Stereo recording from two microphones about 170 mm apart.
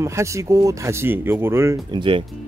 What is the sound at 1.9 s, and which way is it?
Speech, 30° right (ahead or behind).